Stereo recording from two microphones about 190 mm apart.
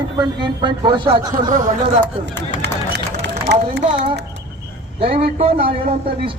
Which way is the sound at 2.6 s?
65° right (ahead or behind).